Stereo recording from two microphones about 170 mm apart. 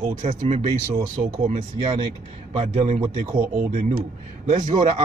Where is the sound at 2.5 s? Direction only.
35° right (ahead or behind).